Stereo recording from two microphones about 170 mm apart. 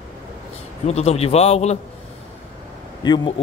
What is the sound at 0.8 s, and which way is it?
Speech, 40° left (ahead or behind).